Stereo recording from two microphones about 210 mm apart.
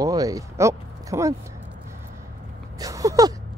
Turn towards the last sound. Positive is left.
turn(degrees=-15)  # may be behind; listen again after turning